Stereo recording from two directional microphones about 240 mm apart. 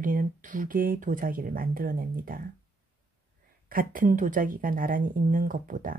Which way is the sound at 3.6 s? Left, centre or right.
Right.